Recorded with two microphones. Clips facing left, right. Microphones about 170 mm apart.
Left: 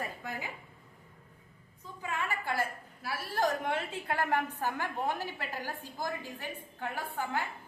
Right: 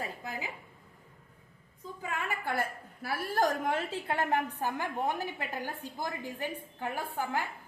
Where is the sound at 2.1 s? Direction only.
55° right (ahead or behind); by 6.1 s 15° right (ahead or behind).